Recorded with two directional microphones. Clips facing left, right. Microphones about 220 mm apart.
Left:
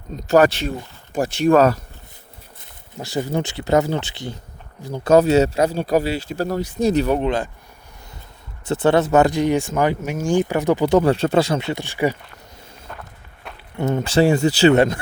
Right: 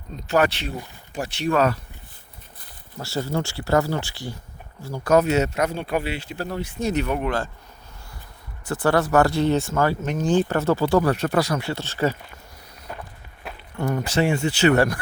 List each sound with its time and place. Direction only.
0.2 s speech: 40° left (ahead or behind)
3.0 s speech: 15° left (ahead or behind); by 7.3 s 35° left (ahead or behind)
7.3 s speech: 20° left (ahead or behind)
8.6 s speech: 25° left (ahead or behind)
12.9 s walk: 10° right (ahead or behind)
13.7 s speech: 25° left (ahead or behind)